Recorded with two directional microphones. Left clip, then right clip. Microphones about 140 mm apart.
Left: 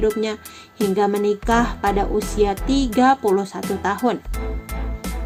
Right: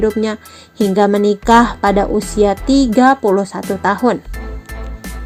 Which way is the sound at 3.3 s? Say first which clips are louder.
Right 5 dB; 40° right (ahead or behind).